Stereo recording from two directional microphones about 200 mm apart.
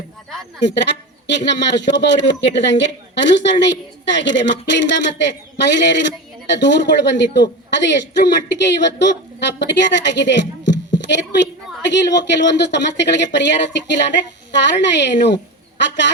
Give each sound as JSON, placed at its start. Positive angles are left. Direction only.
{"t": 0.6, "sound": "a woman's voice", "side_deg": 60}